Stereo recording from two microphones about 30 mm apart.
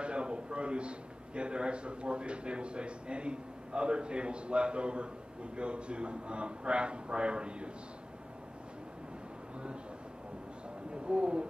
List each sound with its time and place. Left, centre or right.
0.0 s a man's voice: right
11.1 s a man's voice: right